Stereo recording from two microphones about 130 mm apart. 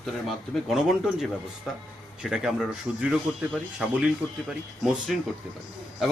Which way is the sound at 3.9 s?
5° right (ahead or behind).